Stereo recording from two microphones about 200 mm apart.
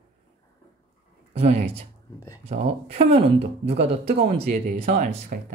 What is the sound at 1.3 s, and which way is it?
Speech, 30° right (ahead or behind).